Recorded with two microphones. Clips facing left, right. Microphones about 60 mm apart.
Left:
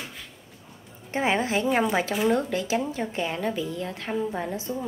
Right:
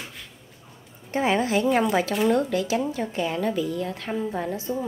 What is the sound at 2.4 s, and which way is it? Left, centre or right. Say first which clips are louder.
A woman's voice: right 2 dB; left.